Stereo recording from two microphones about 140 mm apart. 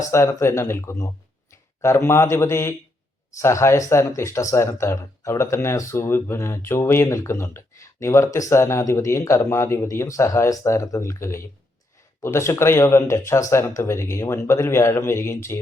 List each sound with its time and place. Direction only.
0.1 s speech: 20° left (ahead or behind)